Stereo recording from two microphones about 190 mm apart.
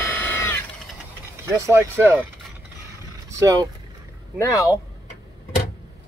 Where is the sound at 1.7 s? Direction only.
10° right (ahead or behind).